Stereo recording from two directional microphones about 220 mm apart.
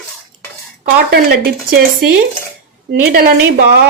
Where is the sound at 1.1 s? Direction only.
45° right (ahead or behind).